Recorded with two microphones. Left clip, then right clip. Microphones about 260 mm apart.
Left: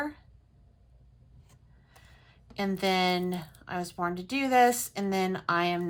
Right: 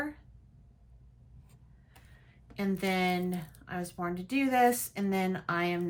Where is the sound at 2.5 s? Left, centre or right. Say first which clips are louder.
Left 4 dB; centre.